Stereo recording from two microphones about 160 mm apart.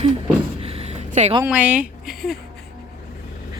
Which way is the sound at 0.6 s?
40° right (ahead or behind).